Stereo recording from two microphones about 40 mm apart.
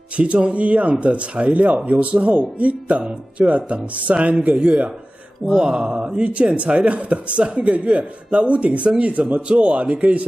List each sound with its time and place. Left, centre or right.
0.1 s speech: right
5.6 s speech: centre; by 10.2 s right